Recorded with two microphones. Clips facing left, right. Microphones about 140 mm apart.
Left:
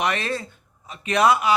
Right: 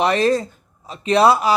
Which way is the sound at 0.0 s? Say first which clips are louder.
Right 8 dB; 35° right (ahead or behind).